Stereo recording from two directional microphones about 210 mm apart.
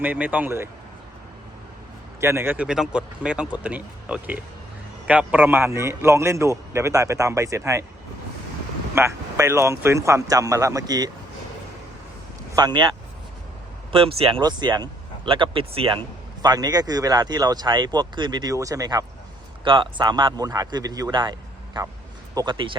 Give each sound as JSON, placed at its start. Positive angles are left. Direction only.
{"t": 0.0, "sound": "a man's voice", "side_deg": -10}
{"t": 2.2, "sound": "a man's voice", "side_deg": -10}
{"t": 9.0, "sound": "a man's voice", "side_deg": -10}
{"t": 12.5, "sound": "speech", "side_deg": -20}
{"t": 13.9, "sound": "speech", "side_deg": -25}